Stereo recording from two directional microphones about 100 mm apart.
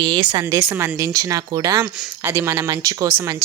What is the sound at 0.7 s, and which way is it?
Speech, 30° right (ahead or behind).